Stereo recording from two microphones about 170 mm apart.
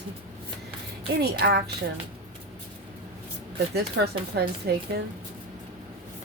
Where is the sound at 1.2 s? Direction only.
70° right (ahead or behind).